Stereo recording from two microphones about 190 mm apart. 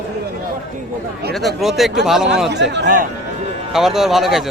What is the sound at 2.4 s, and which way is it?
Speech, 65° right (ahead or behind).